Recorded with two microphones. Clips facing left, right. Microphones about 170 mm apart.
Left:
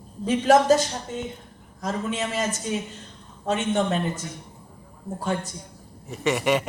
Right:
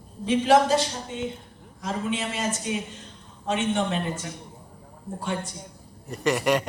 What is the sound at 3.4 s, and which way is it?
Speech, 40° left (ahead or behind).